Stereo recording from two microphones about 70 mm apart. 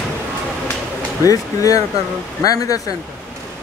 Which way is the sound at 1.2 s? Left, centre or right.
Left.